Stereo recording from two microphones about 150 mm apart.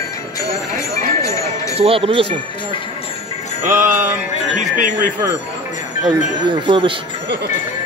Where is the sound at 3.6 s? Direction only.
60° right (ahead or behind).